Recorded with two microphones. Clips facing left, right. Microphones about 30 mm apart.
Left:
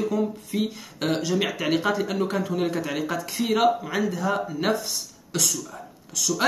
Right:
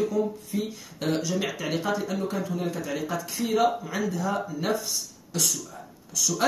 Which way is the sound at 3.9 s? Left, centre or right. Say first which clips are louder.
Left 3 dB; left.